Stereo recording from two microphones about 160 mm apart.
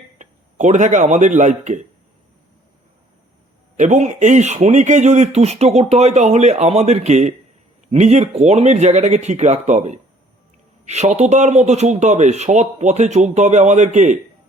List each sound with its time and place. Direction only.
0.2 s a man's voice: 50° right (ahead or behind)
3.8 s speech: 50° right (ahead or behind)